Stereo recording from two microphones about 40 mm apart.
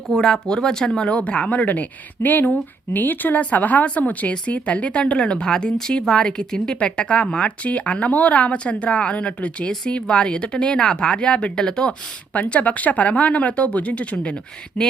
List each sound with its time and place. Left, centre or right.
0.1 s speech: centre
1.0 s speech: left
12.4 s speech: left